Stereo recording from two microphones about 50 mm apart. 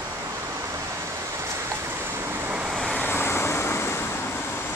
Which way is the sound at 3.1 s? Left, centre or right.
Left.